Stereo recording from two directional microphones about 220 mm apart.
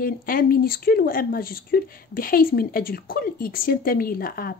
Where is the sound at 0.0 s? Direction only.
40° left (ahead or behind).